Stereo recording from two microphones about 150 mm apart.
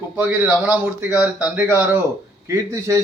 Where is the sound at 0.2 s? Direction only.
10° right (ahead or behind).